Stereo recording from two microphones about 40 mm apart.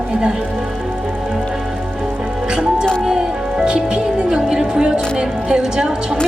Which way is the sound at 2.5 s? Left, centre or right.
Right.